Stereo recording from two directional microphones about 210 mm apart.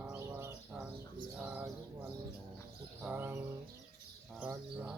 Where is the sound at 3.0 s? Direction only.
5° right (ahead or behind).